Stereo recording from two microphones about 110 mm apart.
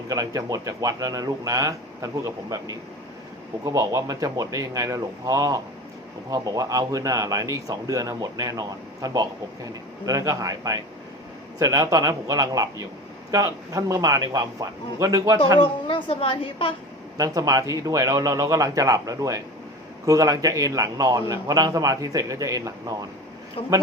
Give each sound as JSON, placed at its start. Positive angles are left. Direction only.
{"t": 0.1, "sound": "a man's voice", "side_deg": -35}
{"t": 15.5, "sound": "a woman's voice", "side_deg": 50}
{"t": 17.2, "sound": "a man's voice", "side_deg": -35}
{"t": 23.6, "sound": "speech", "side_deg": 60}